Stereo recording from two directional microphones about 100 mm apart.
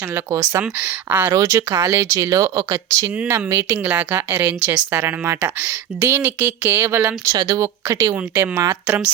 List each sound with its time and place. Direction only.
0.1 s speech: 30° right (ahead or behind)
0.6 s speech: 15° right (ahead or behind)
1.3 s speech: 30° right (ahead or behind)
3.2 s speech: 25° right (ahead or behind)
7.3 s speech: 35° right (ahead or behind)